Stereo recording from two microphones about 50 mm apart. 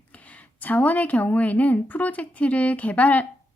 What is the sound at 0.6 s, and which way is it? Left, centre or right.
A woman's voice, left.